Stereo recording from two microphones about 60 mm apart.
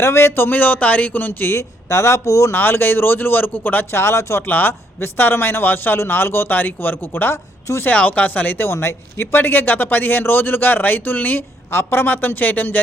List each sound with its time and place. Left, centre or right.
0.0 s speech: left
2.5 s speech: left
4.0 s speech: left
4.4 s speech: left
7.9 s speech: left
8.7 s speech: left
9.2 s speech: left